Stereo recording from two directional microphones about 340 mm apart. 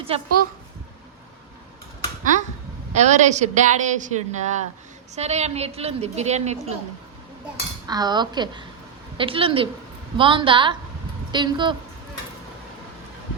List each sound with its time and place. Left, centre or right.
0.1 s a woman's voice: centre
2.9 s a woman's voice: right
7.9 s a woman's voice: centre